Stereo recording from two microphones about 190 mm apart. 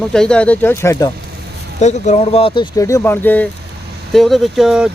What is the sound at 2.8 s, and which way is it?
Speech, 15° left (ahead or behind).